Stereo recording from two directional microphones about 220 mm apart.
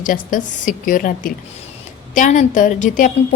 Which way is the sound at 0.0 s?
35° left (ahead or behind).